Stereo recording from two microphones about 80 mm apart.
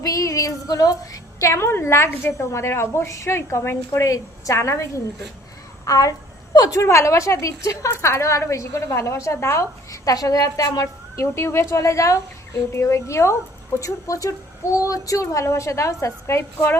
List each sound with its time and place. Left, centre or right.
0.0 s a woman's voice: left
5.8 s a woman's voice: left
6.8 s a woman's voice: left